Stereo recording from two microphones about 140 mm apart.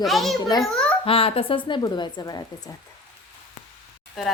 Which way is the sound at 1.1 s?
40° left (ahead or behind).